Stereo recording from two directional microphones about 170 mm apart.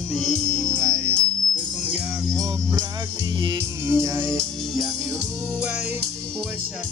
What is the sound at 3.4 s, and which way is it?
Music, 20° right (ahead or behind).